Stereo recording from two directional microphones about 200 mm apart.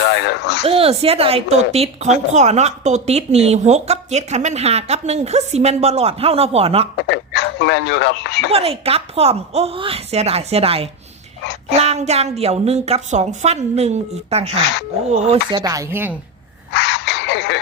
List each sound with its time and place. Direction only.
0.0 s a sound: 60° left (ahead or behind)
0.6 s a woman's voice: 30° right (ahead or behind)
6.9 s speech: 60° left (ahead or behind)
8.5 s a woman's voice: 30° right (ahead or behind)
15.3 s speech: 20° right (ahead or behind)
16.7 s a sound: 60° left (ahead or behind)